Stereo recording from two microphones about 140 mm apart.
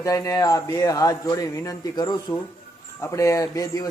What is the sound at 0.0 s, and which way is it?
A man's voice, 25° left (ahead or behind).